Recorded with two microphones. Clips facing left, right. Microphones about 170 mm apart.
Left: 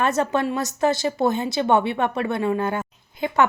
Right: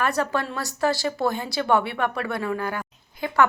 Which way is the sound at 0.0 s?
20° left (ahead or behind).